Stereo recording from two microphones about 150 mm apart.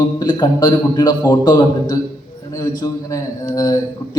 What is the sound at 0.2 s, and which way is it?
A man's voice, 25° left (ahead or behind).